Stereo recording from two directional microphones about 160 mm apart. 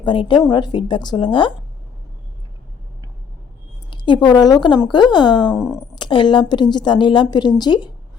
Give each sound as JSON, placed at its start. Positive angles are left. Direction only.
{"t": 0.0, "sound": "a woman's voice", "side_deg": 30}
{"t": 3.8, "sound": "a sound", "side_deg": 30}
{"t": 4.3, "sound": "a woman's voice", "side_deg": 25}
{"t": 5.5, "sound": "speech", "side_deg": 15}
{"t": 6.0, "sound": "a woman's voice", "side_deg": 30}